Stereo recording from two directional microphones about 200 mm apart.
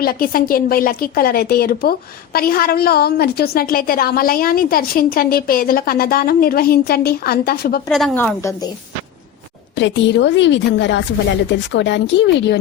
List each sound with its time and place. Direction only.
0.0 s a woman's voice: 45° left (ahead or behind)
7.9 s a woman's voice: centre (ahead or behind)
9.7 s a woman's voice: 60° left (ahead or behind)